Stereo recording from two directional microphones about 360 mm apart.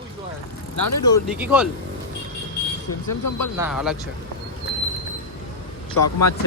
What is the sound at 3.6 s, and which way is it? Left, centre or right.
Speech, centre.